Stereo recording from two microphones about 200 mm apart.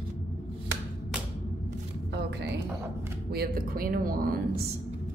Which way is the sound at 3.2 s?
50° right (ahead or behind).